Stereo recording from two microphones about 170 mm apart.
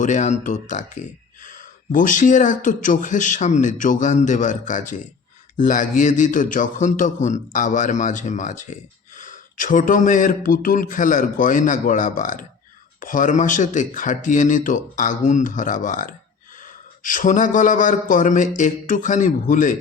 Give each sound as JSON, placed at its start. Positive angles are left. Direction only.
{"t": 0.0, "sound": "a man's voice", "side_deg": 45}